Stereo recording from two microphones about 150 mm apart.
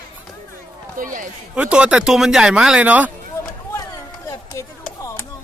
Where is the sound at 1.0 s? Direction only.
70° right (ahead or behind).